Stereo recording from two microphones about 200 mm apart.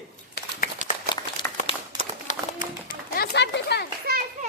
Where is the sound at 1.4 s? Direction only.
25° left (ahead or behind).